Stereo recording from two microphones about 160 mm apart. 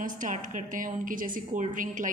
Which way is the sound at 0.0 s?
55° right (ahead or behind).